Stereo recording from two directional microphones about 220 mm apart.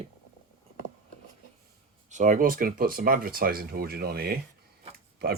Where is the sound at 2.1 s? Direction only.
35° right (ahead or behind).